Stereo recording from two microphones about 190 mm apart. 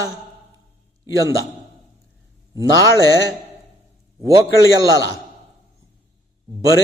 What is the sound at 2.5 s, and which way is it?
Speech, 20° right (ahead or behind).